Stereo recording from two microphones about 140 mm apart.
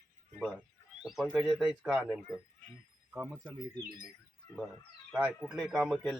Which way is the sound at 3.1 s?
10° right (ahead or behind).